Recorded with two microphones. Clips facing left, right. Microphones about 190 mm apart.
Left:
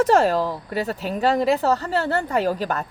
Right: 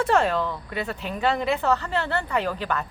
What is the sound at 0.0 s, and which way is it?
Speech, 40° left (ahead or behind).